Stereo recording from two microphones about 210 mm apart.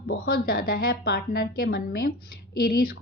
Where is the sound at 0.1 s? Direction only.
45° left (ahead or behind).